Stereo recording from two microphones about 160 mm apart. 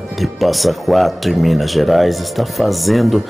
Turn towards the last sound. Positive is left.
turn(degrees=0)  # may be behind; listen again after turning